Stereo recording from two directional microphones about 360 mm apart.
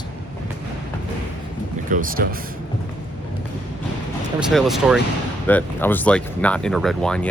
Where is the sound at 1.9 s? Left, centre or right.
Right.